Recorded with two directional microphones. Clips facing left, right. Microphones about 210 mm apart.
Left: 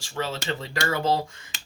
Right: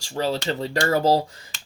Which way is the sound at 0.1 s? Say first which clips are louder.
Right 5 dB; 40° right (ahead or behind).